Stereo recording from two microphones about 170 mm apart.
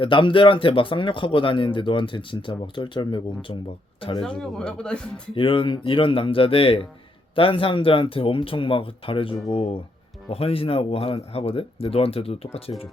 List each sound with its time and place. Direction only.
0.0 s speech: 30° left (ahead or behind)
4.4 s speech: 5° left (ahead or behind)
5.3 s speech: 30° left (ahead or behind)